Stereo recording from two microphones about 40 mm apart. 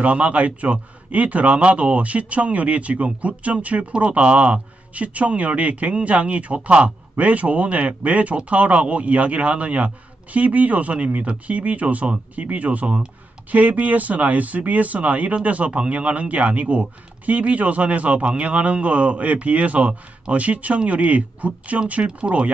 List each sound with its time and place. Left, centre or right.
0.0 s speech: right
13.5 s speech: right